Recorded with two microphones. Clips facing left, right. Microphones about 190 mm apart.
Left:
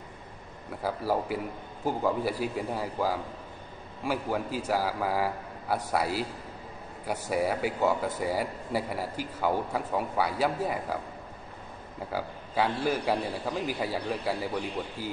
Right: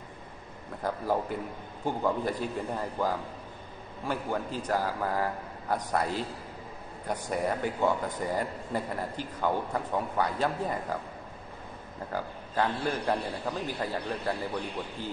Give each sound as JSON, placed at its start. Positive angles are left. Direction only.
{"t": 0.8, "sound": "a man's voice", "side_deg": 5}
{"t": 12.1, "sound": "a man's voice", "side_deg": 10}